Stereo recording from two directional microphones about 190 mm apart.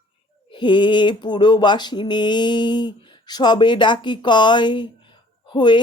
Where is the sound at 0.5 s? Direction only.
25° left (ahead or behind).